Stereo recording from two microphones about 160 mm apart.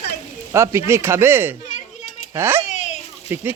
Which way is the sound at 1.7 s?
50° left (ahead or behind).